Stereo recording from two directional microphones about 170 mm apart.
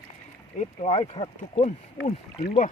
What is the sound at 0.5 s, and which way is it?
Speech, 40° left (ahead or behind).